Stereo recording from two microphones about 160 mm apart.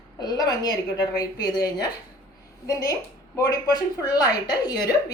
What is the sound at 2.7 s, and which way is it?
A woman's voice, 20° left (ahead or behind).